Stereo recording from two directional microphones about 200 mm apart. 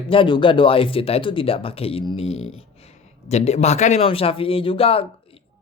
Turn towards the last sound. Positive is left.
turn(degrees=30)  # may be behind; listen again after turning